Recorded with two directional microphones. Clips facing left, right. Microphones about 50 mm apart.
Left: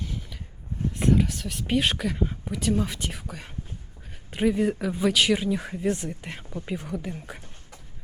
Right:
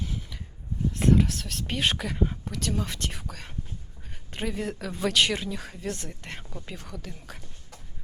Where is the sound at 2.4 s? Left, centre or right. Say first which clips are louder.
Left 5 dB; centre.